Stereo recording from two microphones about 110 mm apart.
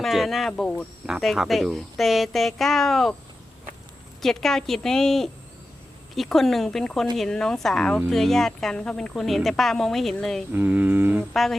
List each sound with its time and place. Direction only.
0.0 s speech: centre (ahead or behind)
1.0 s speech: centre (ahead or behind)
4.2 s speech: 5° left (ahead or behind)
10.5 s cattle: 15° right (ahead or behind)